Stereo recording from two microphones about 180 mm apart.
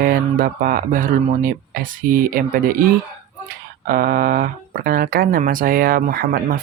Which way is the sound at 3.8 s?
55° right (ahead or behind).